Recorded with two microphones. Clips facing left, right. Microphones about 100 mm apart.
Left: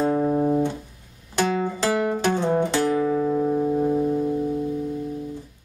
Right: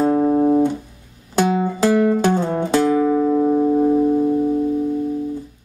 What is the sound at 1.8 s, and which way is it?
Music, centre (ahead or behind).